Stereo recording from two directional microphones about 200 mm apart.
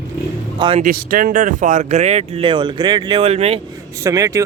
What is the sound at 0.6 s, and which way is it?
Speech, 25° right (ahead or behind).